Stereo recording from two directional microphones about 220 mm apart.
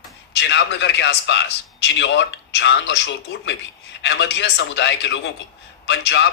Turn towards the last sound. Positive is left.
turn(degrees=55)  # may be behind; listen again after turning